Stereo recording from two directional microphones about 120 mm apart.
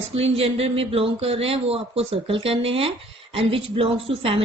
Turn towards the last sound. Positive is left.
turn(degrees=-50)  # may be behind; listen again after turning